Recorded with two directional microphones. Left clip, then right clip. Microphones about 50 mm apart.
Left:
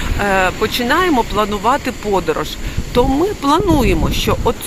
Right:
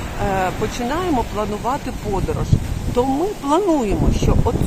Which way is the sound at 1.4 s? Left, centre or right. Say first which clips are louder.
Left 7 dB; left.